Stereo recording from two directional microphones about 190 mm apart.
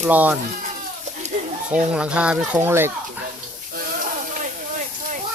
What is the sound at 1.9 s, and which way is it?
Speech, 5° right (ahead or behind).